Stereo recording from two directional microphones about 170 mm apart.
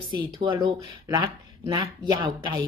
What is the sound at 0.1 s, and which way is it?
Speech, 30° right (ahead or behind).